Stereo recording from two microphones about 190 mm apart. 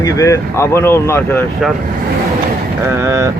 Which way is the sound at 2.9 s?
15° right (ahead or behind).